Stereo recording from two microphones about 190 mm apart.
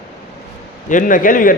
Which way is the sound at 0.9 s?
45° left (ahead or behind).